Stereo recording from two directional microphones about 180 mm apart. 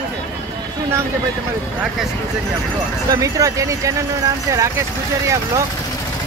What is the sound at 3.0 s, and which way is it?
Speech, 20° right (ahead or behind).